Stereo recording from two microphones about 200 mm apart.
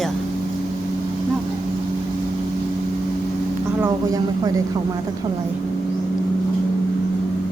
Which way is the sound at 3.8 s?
15° right (ahead or behind).